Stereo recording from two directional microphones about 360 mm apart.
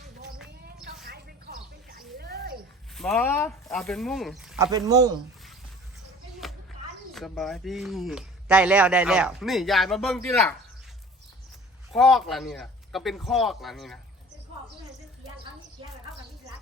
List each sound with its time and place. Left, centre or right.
1.0 s a sound: right
2.9 s speech: centre
7.1 s speech: centre
11.9 s speech: centre